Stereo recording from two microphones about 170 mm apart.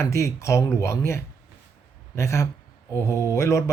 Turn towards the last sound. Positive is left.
turn(degrees=15)  # may be behind; listen again after turning